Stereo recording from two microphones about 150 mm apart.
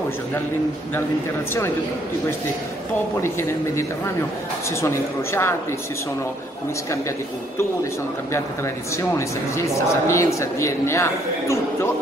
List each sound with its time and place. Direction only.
3.2 s a man's voice: 15° left (ahead or behind)
9.6 s a man's voice: 20° left (ahead or behind)